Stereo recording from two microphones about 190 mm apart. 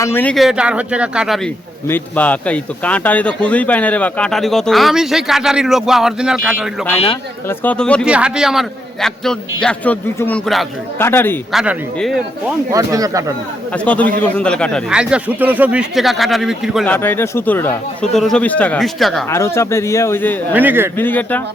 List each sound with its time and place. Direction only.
0.0 s speech: 10° left (ahead or behind); by 1.4 s 5° right (ahead or behind)
1.9 s speech: 10° left (ahead or behind)
8.0 s speech: 5° right (ahead or behind); by 11.3 s 10° left (ahead or behind)
11.5 s speech: 5° right (ahead or behind)
12.7 s speech: 20° right (ahead or behind)
13.8 s speech: 10° left (ahead or behind)
16.9 s speech: 10° left (ahead or behind)
19.3 s speech: 15° left (ahead or behind)
20.5 s speech: 10° right (ahead or behind)
21.0 s speech: 10° left (ahead or behind)